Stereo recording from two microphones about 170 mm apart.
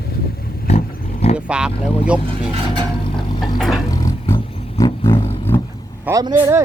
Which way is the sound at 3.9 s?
15° left (ahead or behind).